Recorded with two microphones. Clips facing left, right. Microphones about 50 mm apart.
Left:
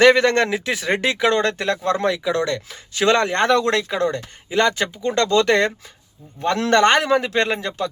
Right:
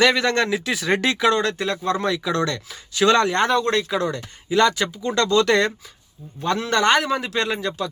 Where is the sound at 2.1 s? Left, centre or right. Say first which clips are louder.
Left 2 dB; centre.